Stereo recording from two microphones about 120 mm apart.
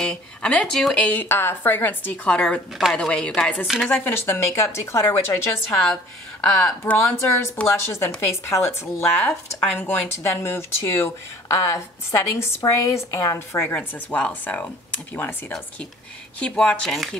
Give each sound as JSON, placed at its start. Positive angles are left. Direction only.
{"t": 0.0, "sound": "speech", "side_deg": 5}
{"t": 4.0, "sound": "speech", "side_deg": 20}
{"t": 6.8, "sound": "speech", "side_deg": 20}
{"t": 9.2, "sound": "speech", "side_deg": 5}
{"t": 9.8, "sound": "speech", "side_deg": 20}
{"t": 16.3, "sound": "speech", "side_deg": 10}